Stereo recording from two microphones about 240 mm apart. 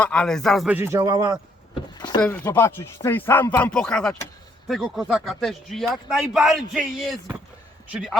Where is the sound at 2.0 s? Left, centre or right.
Centre.